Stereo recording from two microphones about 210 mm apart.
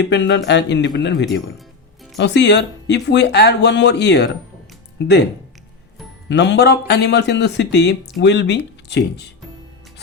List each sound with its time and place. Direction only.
0.0 s speech: 55° left (ahead or behind)
6.2 s speech: 55° left (ahead or behind)